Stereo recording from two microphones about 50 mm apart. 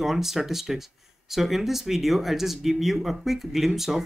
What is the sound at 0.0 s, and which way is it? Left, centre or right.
Speech, centre.